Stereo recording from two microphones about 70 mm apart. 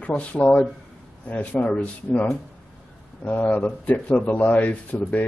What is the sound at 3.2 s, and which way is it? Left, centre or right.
Speech, left.